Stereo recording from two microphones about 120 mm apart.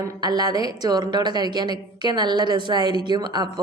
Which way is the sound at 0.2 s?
35° right (ahead or behind).